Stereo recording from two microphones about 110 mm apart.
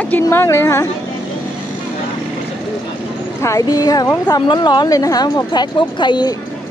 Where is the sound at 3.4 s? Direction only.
30° left (ahead or behind).